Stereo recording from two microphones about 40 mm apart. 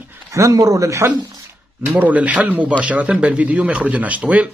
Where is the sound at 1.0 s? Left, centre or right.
Right.